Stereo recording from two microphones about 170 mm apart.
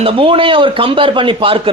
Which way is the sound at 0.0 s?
30° right (ahead or behind).